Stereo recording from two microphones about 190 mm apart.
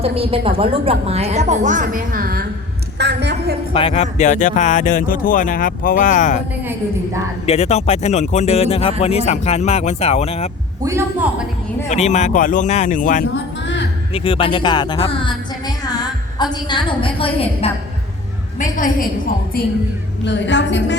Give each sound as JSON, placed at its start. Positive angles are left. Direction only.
{"t": 0.0, "sound": "a woman's voice", "side_deg": -30}
{"t": 3.0, "sound": "a woman's voice", "side_deg": -60}
{"t": 3.7, "sound": "speech", "side_deg": 30}
{"t": 7.4, "sound": "speech", "side_deg": 35}
{"t": 10.8, "sound": "a man's voice", "side_deg": -10}
{"t": 11.9, "sound": "speech", "side_deg": 35}
{"t": 14.1, "sound": "a woman's voice", "side_deg": 30}
{"t": 18.6, "sound": "a woman's voice", "side_deg": 45}
{"t": 20.2, "sound": "a woman's voice", "side_deg": 70}